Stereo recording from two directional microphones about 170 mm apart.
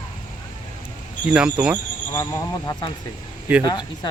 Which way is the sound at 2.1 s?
20° left (ahead or behind).